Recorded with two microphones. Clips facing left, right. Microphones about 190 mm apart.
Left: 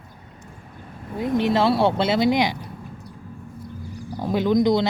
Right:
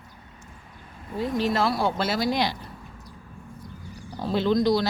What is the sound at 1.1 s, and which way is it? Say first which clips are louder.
A woman's voice: left 4 dB; 20° left (ahead or behind).